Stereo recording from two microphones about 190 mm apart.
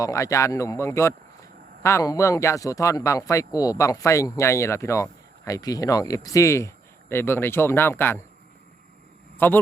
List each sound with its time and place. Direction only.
0.0 s speech: 15° left (ahead or behind)
9.4 s speech: 10° left (ahead or behind)